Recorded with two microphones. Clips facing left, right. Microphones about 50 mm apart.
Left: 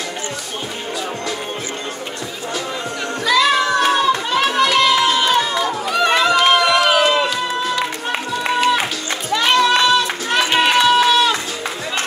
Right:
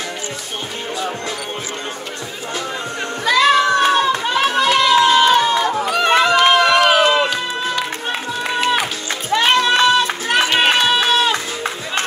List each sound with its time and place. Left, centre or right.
3.3 s music: right
3.9 s hands: right
4.6 s a sound: right
5.1 s crowd: right
5.8 s run: right
7.0 s music: right
9.3 s music: right
10.6 s crowd: right